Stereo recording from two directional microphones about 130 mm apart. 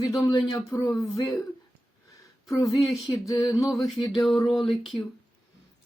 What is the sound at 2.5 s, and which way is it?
Speech, 25° left (ahead or behind).